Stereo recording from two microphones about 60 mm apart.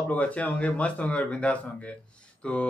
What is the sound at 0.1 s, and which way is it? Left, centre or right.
A man's voice, left.